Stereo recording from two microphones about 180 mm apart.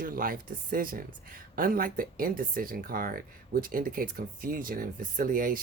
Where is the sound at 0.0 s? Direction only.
50° right (ahead or behind).